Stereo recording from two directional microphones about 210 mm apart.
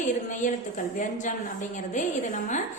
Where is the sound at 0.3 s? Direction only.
40° left (ahead or behind).